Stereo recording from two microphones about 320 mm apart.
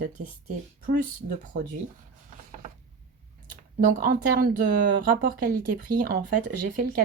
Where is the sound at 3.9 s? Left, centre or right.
Right.